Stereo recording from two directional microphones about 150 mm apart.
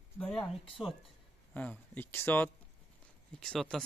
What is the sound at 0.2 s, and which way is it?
Speech, 5° left (ahead or behind).